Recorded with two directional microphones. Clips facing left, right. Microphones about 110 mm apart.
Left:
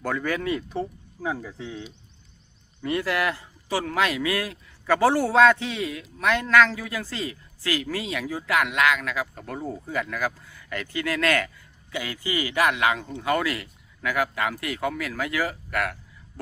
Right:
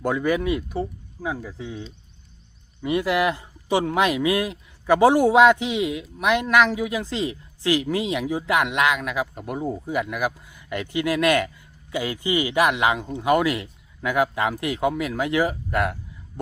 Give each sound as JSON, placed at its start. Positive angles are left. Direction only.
{"t": 0.0, "sound": "speech", "side_deg": -15}
{"t": 2.8, "sound": "speech", "side_deg": -15}